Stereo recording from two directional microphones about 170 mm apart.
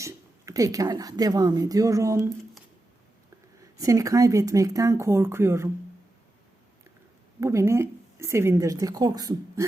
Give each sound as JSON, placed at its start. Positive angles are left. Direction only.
{"t": 0.0, "sound": "speech", "side_deg": -20}
{"t": 3.6, "sound": "speech", "side_deg": -20}
{"t": 7.3, "sound": "speech", "side_deg": -15}